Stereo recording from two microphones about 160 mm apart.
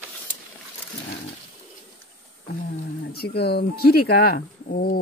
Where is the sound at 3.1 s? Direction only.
85° left; by 5.0 s 70° left (ahead or behind).